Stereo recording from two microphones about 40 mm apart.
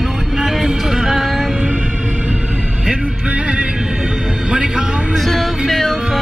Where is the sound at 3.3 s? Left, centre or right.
Right.